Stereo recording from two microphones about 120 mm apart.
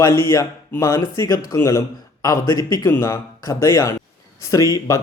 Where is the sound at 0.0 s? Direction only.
20° left (ahead or behind).